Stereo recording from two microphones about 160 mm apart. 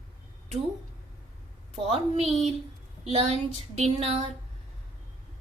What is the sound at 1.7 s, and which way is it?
Speech, 40° right (ahead or behind).